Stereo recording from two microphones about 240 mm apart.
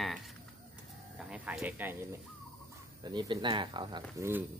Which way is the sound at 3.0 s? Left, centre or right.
Centre.